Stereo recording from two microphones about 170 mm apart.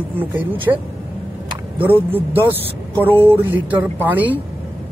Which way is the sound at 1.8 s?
10° right (ahead or behind).